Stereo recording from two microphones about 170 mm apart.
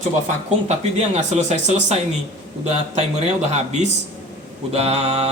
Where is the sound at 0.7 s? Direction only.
40° right (ahead or behind).